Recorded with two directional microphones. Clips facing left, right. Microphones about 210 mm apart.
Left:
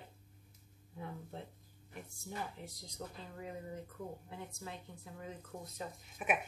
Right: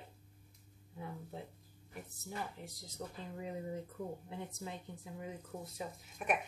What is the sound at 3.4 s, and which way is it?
Speech, 20° right (ahead or behind).